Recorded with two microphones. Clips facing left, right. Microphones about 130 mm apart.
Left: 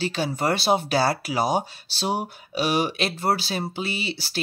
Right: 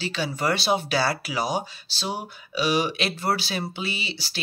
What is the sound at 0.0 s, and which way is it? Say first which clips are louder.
Speech: left 2 dB; 45° left (ahead or behind).